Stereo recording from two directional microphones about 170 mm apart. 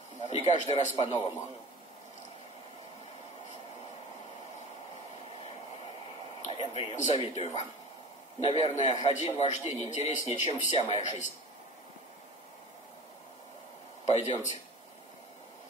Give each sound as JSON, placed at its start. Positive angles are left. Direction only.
{"t": 0.2, "sound": "a man's voice", "side_deg": 40}
{"t": 6.4, "sound": "a sound", "side_deg": 35}
{"t": 7.2, "sound": "a man's voice", "side_deg": 40}
{"t": 14.0, "sound": "a man's voice", "side_deg": 40}